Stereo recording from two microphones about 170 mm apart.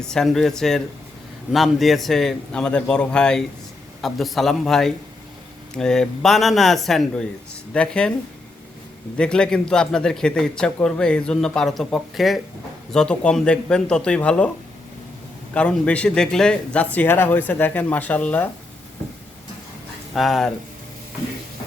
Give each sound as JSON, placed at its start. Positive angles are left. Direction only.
{"t": 0.1, "sound": "a man's voice", "side_deg": 5}
{"t": 9.1, "sound": "a man's voice", "side_deg": 5}
{"t": 15.5, "sound": "speech", "side_deg": 5}
{"t": 20.1, "sound": "a man's voice", "side_deg": 0}